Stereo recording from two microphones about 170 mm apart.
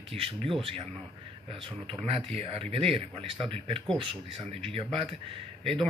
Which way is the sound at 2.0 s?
35° right (ahead or behind).